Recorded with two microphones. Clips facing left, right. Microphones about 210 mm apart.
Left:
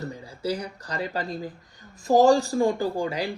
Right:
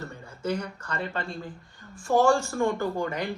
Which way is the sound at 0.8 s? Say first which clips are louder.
Left 2 dB; 35° left (ahead or behind).